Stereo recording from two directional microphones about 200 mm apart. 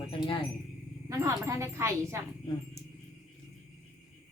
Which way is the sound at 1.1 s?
15° right (ahead or behind).